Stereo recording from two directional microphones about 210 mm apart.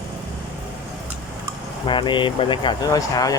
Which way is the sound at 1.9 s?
25° left (ahead or behind).